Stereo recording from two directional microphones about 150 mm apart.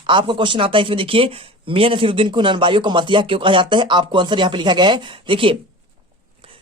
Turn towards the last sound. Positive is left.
turn(degrees=-35)  # may be behind; listen again after turning